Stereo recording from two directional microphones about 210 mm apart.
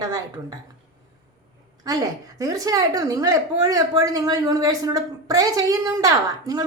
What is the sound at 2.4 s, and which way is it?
Speech, 15° right (ahead or behind).